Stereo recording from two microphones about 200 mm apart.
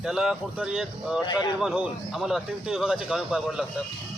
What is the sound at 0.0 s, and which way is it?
Speech, centre (ahead or behind).